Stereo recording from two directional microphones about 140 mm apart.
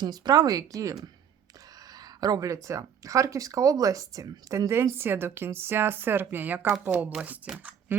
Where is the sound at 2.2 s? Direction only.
25° right (ahead or behind); by 7.9 s 10° right (ahead or behind).